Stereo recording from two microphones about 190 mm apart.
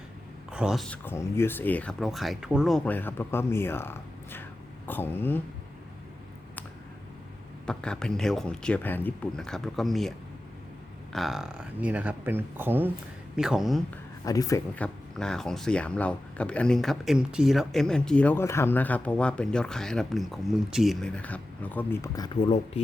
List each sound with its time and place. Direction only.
0.5 s speech: 5° right (ahead or behind)
1.0 s speech: 15° left (ahead or behind)
7.7 s speech: 5° left (ahead or behind)
14.3 s speech: 20° left (ahead or behind)
14.8 s speech: 5° left (ahead or behind)
22.4 s speech: 30° left (ahead or behind)